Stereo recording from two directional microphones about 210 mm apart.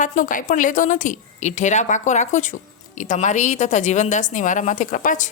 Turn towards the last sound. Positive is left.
turn(degrees=40)  # may be behind; listen again after turning